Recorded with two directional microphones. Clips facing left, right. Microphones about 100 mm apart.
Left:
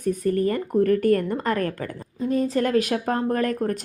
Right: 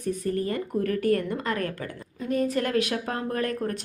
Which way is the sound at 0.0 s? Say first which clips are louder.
Left 5 dB; 45° left (ahead or behind).